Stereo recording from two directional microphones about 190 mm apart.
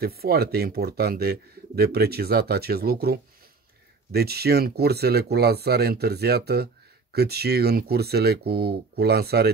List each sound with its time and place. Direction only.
0.0 s speech: 55° right (ahead or behind)